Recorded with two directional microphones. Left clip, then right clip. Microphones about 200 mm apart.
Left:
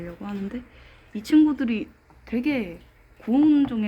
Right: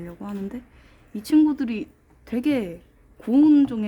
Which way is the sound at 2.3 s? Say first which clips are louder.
Right 2 dB; 55° right (ahead or behind).